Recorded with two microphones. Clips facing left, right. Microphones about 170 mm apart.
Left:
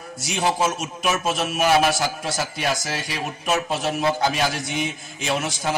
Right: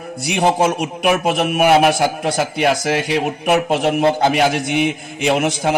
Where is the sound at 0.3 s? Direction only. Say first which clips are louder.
Right 6 dB; 65° right (ahead or behind).